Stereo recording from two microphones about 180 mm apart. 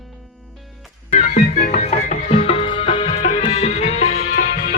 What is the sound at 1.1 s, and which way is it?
Music, 45° left (ahead or behind).